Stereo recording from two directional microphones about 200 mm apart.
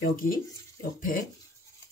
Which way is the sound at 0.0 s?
45° left (ahead or behind).